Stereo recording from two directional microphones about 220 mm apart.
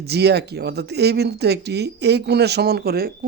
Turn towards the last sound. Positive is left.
turn(degrees=-45)  # may be behind; listen again after turning